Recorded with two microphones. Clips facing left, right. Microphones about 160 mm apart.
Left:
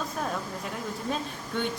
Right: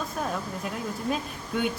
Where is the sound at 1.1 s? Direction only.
5° right (ahead or behind).